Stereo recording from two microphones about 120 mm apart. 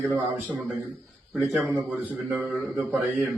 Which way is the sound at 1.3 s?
Centre (ahead or behind).